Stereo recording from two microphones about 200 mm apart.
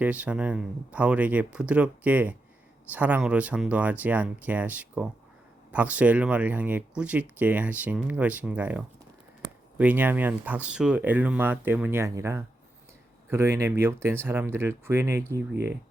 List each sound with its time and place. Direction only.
0.0 s speech: 5° right (ahead or behind)
15.5 s speech: 55° right (ahead or behind)